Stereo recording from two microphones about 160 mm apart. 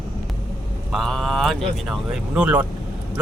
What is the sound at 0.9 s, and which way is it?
A man's voice, centre (ahead or behind).